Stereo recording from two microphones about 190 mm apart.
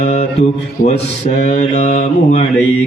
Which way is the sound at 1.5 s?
35° left (ahead or behind).